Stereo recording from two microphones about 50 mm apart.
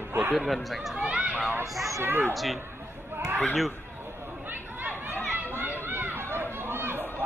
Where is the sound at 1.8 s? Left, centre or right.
Right.